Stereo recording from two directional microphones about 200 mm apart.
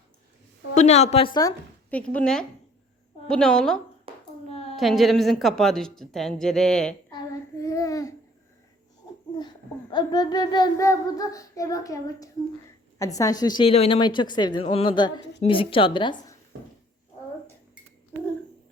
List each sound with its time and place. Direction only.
0.7 s a woman's voice: 35° left (ahead or behind)
1.9 s a woman's voice: 5° left (ahead or behind)
4.1 s hands: 30° right (ahead or behind)
4.8 s a woman's voice: centre (ahead or behind)
7.6 s babbling: 15° left (ahead or behind)
9.9 s child singing: 20° left (ahead or behind)
13.0 s a woman's voice: 15° left (ahead or behind)